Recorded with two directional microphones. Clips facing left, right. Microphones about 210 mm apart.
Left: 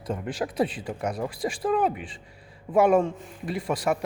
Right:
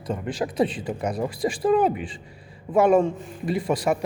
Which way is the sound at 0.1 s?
5° left (ahead or behind).